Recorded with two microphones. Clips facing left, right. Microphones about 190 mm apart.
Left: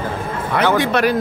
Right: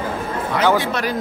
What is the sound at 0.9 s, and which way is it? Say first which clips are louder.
Speech: left 6 dB; 65° left (ahead or behind).